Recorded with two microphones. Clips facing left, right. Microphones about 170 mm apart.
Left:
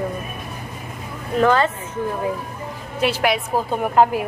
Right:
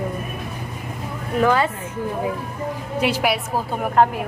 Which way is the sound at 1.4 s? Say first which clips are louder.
Left 1 dB; 10° right (ahead or behind).